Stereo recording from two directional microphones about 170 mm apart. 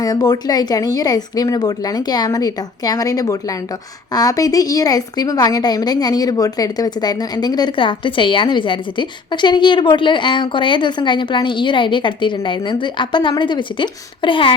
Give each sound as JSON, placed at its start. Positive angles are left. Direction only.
{"t": 0.0, "sound": "a woman's voice", "side_deg": 25}